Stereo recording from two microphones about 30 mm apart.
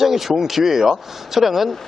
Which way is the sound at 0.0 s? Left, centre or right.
Centre.